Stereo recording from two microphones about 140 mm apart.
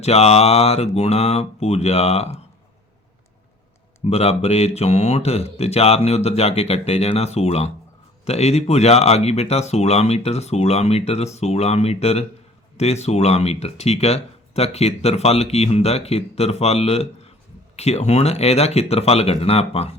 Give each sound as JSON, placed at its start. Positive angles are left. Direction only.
{"t": 0.0, "sound": "speech", "side_deg": 45}
{"t": 4.0, "sound": "speech", "side_deg": 45}